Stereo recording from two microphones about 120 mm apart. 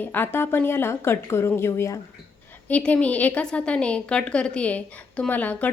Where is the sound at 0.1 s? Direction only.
15° left (ahead or behind).